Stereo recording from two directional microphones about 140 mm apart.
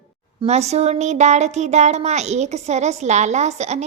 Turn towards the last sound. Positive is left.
turn(degrees=-55)  # may be behind; listen again after turning